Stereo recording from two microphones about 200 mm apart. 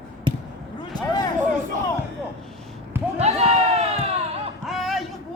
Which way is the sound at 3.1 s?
30° right (ahead or behind).